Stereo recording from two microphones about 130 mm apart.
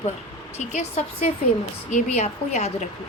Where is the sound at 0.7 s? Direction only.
60° left (ahead or behind).